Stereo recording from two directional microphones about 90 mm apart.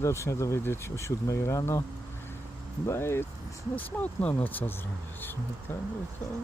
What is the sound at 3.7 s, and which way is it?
Speech, 20° left (ahead or behind).